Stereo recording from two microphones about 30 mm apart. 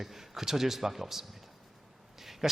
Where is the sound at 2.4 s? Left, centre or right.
Centre.